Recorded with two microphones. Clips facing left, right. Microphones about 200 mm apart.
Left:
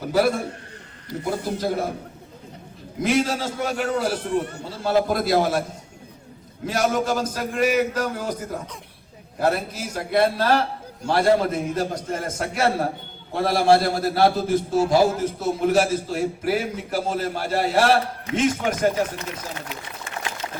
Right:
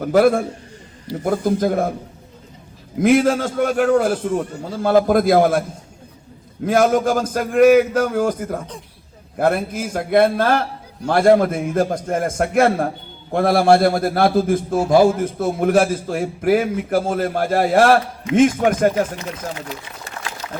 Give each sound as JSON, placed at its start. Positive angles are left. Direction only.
{"t": 0.1, "sound": "a man's voice", "side_deg": -55}
{"t": 3.0, "sound": "a man's voice", "side_deg": -55}
{"t": 6.7, "sound": "a man's voice", "side_deg": -50}